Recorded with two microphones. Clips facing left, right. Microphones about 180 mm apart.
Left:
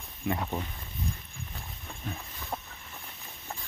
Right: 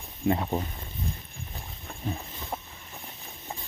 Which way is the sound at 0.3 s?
25° right (ahead or behind).